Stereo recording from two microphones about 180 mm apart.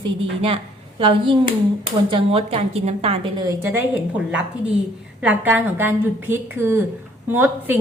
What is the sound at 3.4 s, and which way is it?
A woman's voice, 10° right (ahead or behind).